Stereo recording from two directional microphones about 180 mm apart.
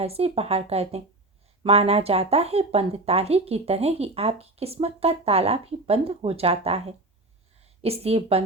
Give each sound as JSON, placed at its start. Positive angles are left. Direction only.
{"t": 0.0, "sound": "a woman's voice", "side_deg": -35}